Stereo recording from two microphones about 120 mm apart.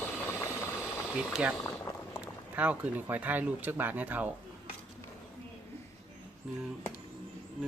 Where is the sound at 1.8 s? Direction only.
20° left (ahead or behind).